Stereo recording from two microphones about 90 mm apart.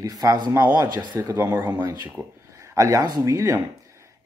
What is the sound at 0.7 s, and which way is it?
Speech, 50° right (ahead or behind).